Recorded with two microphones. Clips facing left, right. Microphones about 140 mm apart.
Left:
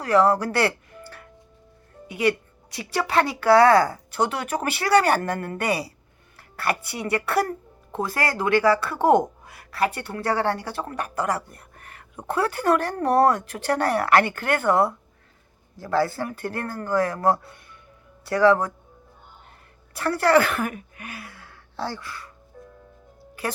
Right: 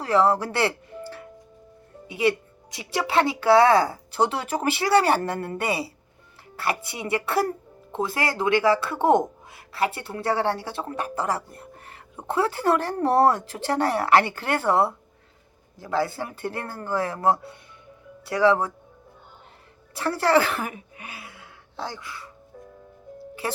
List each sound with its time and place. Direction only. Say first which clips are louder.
0.0 s speech: left 2 dB; 25° right (ahead or behind)
19.9 s speech: left 2 dB; 25° right (ahead or behind)